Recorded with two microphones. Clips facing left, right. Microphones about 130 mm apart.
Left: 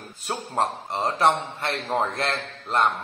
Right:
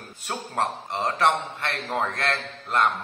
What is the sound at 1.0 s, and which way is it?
A man's voice, 25° left (ahead or behind).